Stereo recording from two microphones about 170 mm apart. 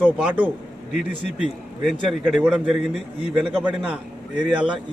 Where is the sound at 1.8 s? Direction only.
Centre (ahead or behind).